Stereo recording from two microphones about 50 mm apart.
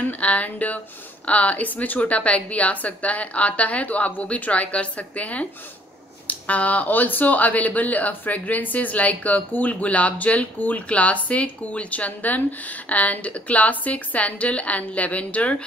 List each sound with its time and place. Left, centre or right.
0.2 s a woman's voice: left